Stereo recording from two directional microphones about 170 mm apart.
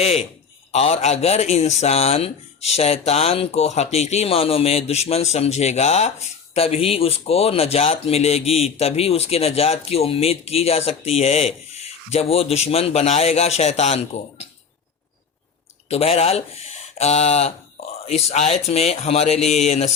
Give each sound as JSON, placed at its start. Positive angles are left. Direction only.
{"t": 0.0, "sound": "a man's voice", "side_deg": 35}
{"t": 15.9, "sound": "a man's voice", "side_deg": 35}